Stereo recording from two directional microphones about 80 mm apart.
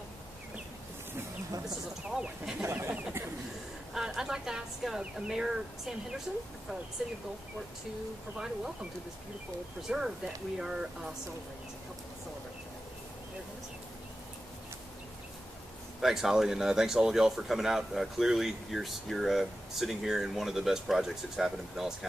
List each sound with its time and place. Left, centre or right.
2.0 s speech: centre
3.9 s speech: centre
8.4 s speech: centre
9.9 s speech: centre
16.0 s speech: centre